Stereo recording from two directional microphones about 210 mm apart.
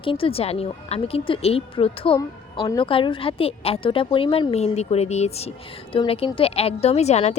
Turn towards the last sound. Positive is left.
turn(degrees=30)  # may be behind; listen again after turning